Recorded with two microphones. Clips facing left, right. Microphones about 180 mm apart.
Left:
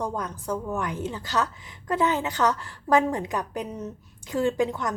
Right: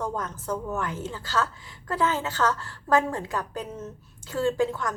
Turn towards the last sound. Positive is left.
turn(degrees=20)  # may be behind; listen again after turning